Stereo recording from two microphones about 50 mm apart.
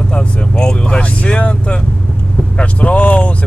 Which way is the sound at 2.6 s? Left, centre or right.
Left.